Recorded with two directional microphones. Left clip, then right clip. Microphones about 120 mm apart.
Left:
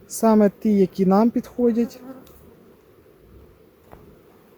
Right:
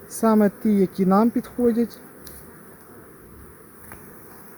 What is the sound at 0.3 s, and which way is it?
Speech, 90° left.